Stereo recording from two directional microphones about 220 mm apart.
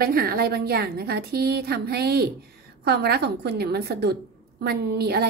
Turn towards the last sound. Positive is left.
turn(degrees=-45)  # may be behind; listen again after turning